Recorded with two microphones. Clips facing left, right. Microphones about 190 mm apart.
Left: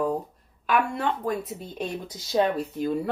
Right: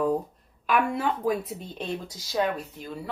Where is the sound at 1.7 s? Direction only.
20° left (ahead or behind).